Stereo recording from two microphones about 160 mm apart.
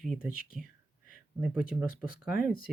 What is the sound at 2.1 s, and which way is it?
Speech, 65° left (ahead or behind).